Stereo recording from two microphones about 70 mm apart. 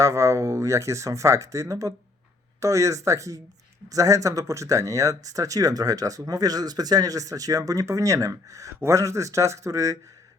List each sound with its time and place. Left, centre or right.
0.0 s speech: right